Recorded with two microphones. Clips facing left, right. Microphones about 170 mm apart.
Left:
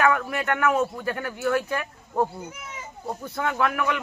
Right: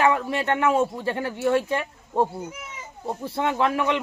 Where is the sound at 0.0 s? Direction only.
25° right (ahead or behind).